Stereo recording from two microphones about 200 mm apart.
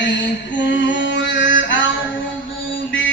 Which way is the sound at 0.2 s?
65° left (ahead or behind).